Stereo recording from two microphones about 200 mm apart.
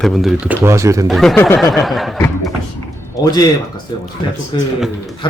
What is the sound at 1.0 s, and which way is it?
Speech, centre (ahead or behind).